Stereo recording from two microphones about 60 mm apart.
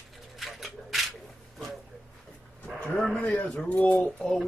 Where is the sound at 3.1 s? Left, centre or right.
Left.